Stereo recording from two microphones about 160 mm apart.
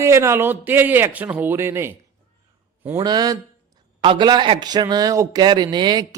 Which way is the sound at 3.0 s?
25° right (ahead or behind).